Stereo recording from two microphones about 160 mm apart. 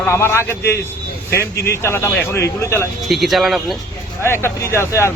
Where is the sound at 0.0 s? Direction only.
15° left (ahead or behind).